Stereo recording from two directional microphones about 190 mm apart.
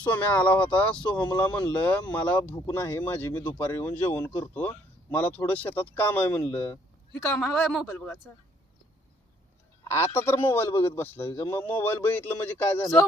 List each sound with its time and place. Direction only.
0.0 s speech: 5° left (ahead or behind)
7.2 s speech: centre (ahead or behind)
10.2 s speech: 10° left (ahead or behind)